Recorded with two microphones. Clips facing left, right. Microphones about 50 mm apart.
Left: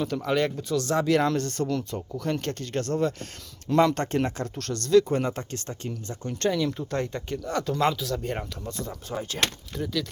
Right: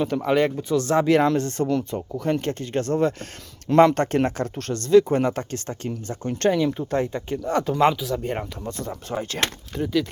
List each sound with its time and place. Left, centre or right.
0.0 s speech: right
1.2 s speech: right
6.7 s speech: right
7.0 s speech: centre
7.4 s speech: right
8.6 s speech: right